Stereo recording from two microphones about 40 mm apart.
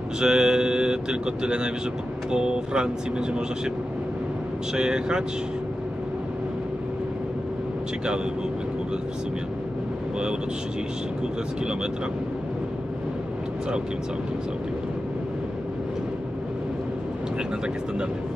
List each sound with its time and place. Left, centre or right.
0.2 s speech: centre
4.7 s speech: right